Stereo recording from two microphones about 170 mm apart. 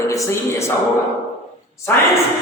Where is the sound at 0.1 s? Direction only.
15° left (ahead or behind).